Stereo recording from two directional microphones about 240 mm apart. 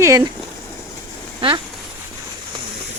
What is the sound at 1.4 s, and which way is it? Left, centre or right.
Speech, right.